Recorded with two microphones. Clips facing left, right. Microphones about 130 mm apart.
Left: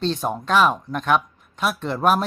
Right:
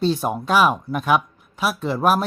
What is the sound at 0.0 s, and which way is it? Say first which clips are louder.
Speech: right 3 dB; 10° right (ahead or behind).